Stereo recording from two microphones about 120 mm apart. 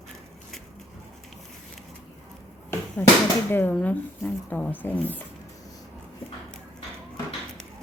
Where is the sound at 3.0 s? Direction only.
15° left (ahead or behind).